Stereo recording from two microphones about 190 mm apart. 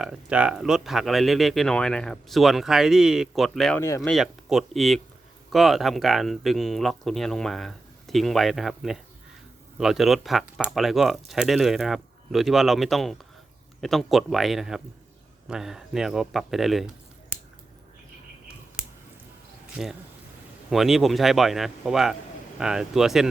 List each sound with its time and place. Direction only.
0.0 s speech: 5° right (ahead or behind)
3.8 s speech: 15° left (ahead or behind)
4.0 s speech: centre (ahead or behind)
19.7 s speech: centre (ahead or behind)